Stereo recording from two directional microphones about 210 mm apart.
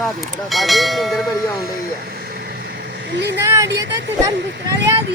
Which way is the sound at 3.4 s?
15° right (ahead or behind).